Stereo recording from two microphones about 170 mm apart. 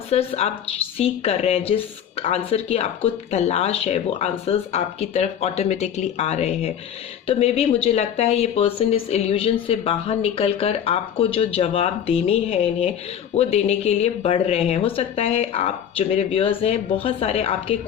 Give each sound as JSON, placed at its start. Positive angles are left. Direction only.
{"t": 0.1, "sound": "speech", "side_deg": 35}